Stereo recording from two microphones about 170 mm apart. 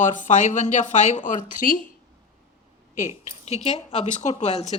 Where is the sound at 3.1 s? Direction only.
15° right (ahead or behind).